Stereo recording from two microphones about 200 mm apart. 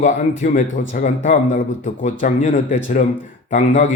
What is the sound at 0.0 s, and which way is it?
A man's voice, 40° left (ahead or behind).